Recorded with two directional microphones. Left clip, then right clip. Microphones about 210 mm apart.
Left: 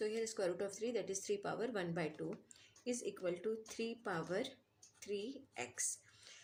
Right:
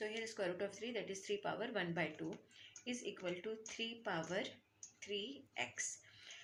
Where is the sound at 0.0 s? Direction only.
50° left (ahead or behind).